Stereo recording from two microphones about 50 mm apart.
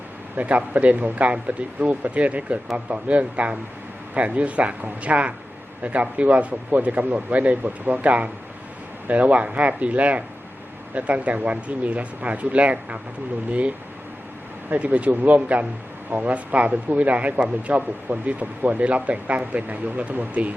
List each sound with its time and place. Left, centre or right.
0.3 s a man's voice: right